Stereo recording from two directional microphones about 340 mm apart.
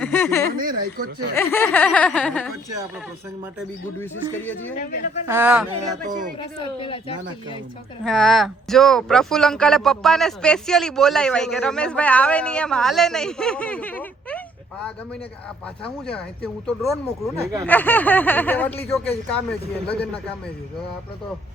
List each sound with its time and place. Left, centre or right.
0.0 s speech: centre
0.5 s speech: right
1.4 s speech: centre
4.8 s speech: left
5.2 s speech: centre
5.7 s speech: right
6.6 s speech: centre
8.0 s speech: centre
15.8 s speech: centre